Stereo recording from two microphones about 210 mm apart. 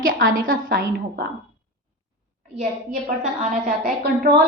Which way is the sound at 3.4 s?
40° right (ahead or behind).